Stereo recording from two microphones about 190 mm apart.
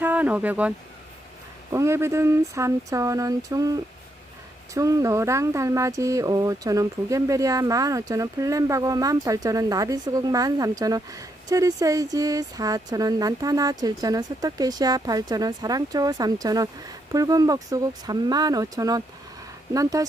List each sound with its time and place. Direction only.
0.0 s speech: 10° right (ahead or behind)
1.7 s speech: 15° right (ahead or behind)